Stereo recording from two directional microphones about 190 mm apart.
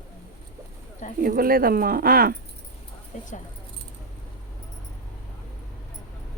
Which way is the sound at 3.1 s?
40° left (ahead or behind).